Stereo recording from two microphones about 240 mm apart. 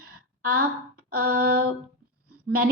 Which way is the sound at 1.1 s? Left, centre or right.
Right.